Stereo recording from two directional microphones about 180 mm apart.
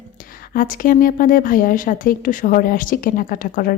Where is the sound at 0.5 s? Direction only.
50° left (ahead or behind).